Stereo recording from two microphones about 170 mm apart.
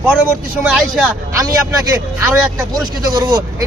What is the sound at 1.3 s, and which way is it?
Speech, 20° right (ahead or behind).